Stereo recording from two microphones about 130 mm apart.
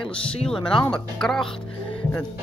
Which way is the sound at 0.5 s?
40° left (ahead or behind).